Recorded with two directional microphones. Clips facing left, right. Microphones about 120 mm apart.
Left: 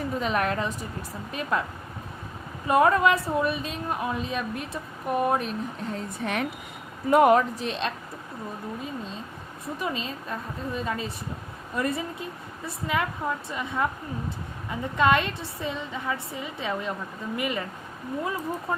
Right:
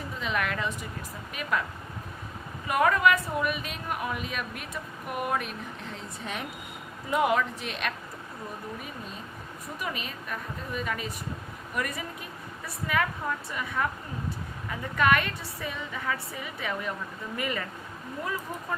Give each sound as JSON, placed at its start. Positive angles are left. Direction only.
{"t": 0.2, "sound": "a woman's voice", "side_deg": 40}
{"t": 2.6, "sound": "a woman's voice", "side_deg": 30}
{"t": 5.9, "sound": "a woman's voice", "side_deg": 60}
{"t": 7.1, "sound": "speech", "side_deg": 50}
{"t": 9.8, "sound": "a woman's voice", "side_deg": 25}